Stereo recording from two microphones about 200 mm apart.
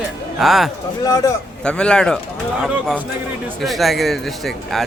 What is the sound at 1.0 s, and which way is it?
Speech, 15° left (ahead or behind).